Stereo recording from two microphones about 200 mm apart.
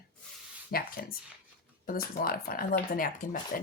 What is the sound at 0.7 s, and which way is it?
Speech, 50° left (ahead or behind).